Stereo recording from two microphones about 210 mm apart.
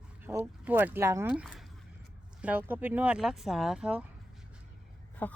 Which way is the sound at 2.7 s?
10° right (ahead or behind).